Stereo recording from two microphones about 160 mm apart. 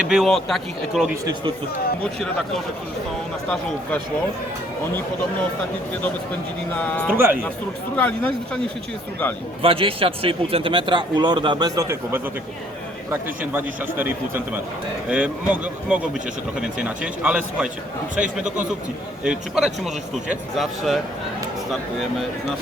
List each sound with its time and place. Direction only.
0.0 s speech: 5° right (ahead or behind)
1.2 s speech: 25° right (ahead or behind)
6.7 s speech: 10° left (ahead or behind)
7.1 s a man's voice: 15° right (ahead or behind)
7.9 s speech: 10° left (ahead or behind)
9.6 s a man's voice: 35° right (ahead or behind); by 21.0 s centre (ahead or behind)